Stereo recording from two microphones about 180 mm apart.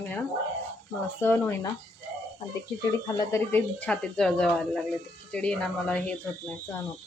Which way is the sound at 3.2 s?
15° left (ahead or behind).